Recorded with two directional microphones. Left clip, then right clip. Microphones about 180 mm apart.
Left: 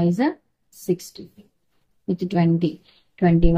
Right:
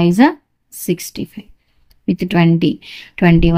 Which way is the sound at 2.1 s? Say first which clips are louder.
Right 7 dB; 50° right (ahead or behind).